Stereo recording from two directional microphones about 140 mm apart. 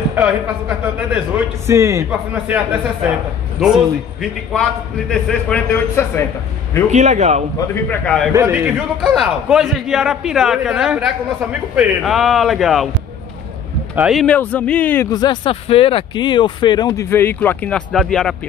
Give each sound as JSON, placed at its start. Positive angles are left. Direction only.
{"t": 0.1, "sound": "a man's voice", "side_deg": -10}
{"t": 3.6, "sound": "a man's voice", "side_deg": -5}
{"t": 5.1, "sound": "a man's voice", "side_deg": 10}
{"t": 6.9, "sound": "a man's voice", "side_deg": -55}
{"t": 7.9, "sound": "a man's voice", "side_deg": 5}
{"t": 8.3, "sound": "a man's voice", "side_deg": -20}
{"t": 9.0, "sound": "a man's voice", "side_deg": 0}
{"t": 13.9, "sound": "a man's voice", "side_deg": -5}
{"t": 14.2, "sound": "a man's voice", "side_deg": 10}
{"t": 15.0, "sound": "speech", "side_deg": 30}